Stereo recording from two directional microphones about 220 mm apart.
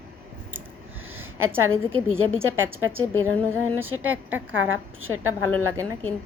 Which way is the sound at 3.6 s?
70° right (ahead or behind).